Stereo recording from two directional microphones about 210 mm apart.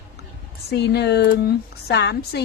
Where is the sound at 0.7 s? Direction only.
50° left (ahead or behind).